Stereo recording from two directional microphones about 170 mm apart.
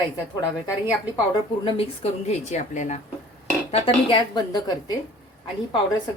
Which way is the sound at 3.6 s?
35° left (ahead or behind).